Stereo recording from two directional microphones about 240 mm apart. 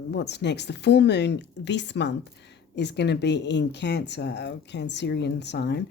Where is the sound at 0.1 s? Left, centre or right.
Left.